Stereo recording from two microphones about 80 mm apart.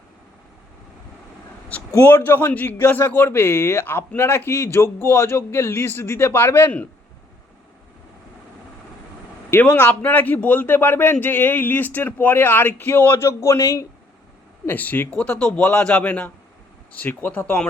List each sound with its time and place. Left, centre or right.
2.0 s a man's voice: left
9.5 s a man's voice: left
14.7 s a man's voice: left
15.1 s a man's voice: centre